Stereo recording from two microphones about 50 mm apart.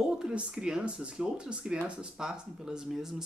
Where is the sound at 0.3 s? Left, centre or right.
Right.